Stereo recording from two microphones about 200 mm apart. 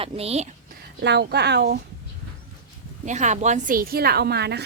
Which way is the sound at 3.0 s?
35° right (ahead or behind).